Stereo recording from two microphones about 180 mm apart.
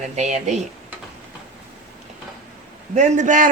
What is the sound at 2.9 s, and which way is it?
Speech, 40° right (ahead or behind).